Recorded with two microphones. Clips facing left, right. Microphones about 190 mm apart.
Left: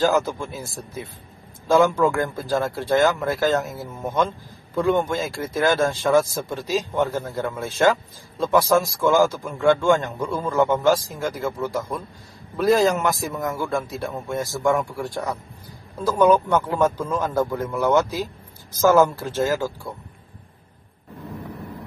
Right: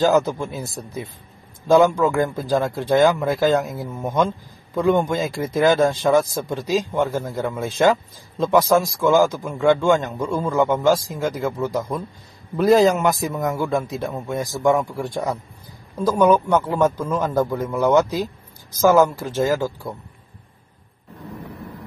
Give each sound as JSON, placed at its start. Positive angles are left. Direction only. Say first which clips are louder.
{"t": 0.0, "sound": "speech", "louder": "right 3 dB", "side_deg": -20}
{"t": 12.8, "sound": "a man's voice", "louder": "right 3 dB", "side_deg": 0}
{"t": 13.4, "sound": "speech", "louder": "right 3 dB", "side_deg": -15}
{"t": 16.1, "sound": "speech", "louder": "right 1 dB", "side_deg": -10}